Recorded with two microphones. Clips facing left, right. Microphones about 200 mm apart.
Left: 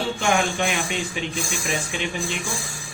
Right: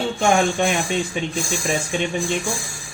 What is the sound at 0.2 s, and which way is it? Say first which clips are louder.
Speech: right 6 dB; 40° right (ahead or behind).